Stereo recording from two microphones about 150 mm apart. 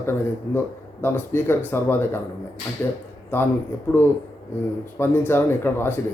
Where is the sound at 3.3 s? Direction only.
15° left (ahead or behind).